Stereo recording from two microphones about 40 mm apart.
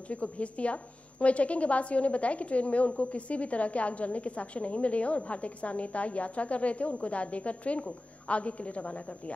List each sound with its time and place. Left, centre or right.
0.1 s a woman's voice: left